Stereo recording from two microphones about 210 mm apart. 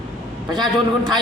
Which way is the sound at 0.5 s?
20° right (ahead or behind).